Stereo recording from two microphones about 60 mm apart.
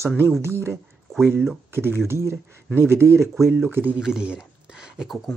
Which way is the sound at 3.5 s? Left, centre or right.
Right.